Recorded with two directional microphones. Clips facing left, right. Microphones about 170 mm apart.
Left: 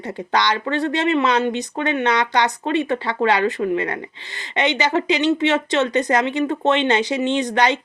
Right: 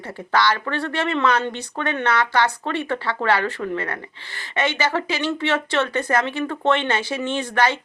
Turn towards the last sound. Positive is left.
turn(degrees=20)  # may be behind; listen again after turning